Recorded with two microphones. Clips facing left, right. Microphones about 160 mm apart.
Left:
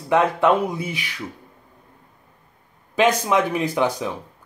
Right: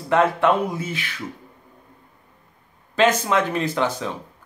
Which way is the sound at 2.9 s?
10° left (ahead or behind).